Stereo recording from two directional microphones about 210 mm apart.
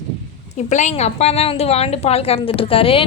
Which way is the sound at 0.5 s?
35° left (ahead or behind).